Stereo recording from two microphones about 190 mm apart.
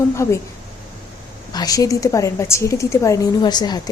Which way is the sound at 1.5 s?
20° left (ahead or behind).